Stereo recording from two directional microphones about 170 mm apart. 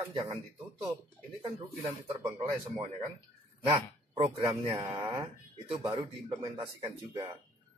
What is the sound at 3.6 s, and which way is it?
A man's voice, 25° right (ahead or behind).